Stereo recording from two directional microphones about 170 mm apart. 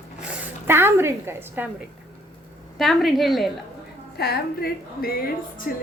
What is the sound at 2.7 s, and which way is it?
Speech, centre (ahead or behind).